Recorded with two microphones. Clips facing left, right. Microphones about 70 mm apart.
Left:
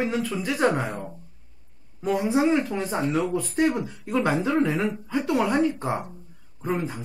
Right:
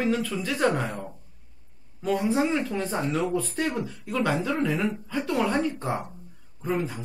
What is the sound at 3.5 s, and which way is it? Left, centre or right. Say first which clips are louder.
Speech: left 5 dB; centre.